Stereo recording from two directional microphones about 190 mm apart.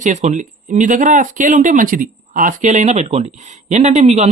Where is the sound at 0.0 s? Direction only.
40° right (ahead or behind).